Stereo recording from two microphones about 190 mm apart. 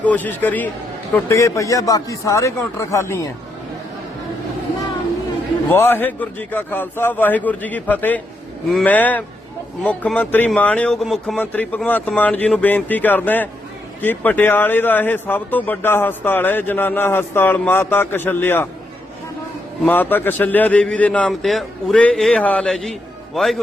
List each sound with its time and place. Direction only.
0.0 s speech: 10° left (ahead or behind)
5.7 s speech: 10° left (ahead or behind)
19.8 s a man's voice: 10° left (ahead or behind)